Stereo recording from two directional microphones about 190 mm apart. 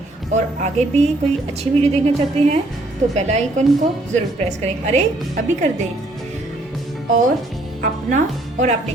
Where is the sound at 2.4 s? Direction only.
35° right (ahead or behind).